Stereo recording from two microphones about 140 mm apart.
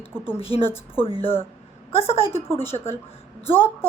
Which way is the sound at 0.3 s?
45° left (ahead or behind).